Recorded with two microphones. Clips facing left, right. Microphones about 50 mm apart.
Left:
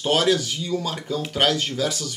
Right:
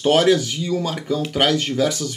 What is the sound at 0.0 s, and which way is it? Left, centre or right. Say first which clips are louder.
Speech: right 5 dB; right.